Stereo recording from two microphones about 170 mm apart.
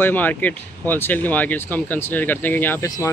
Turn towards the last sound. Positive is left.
turn(degrees=20)  # may be behind; listen again after turning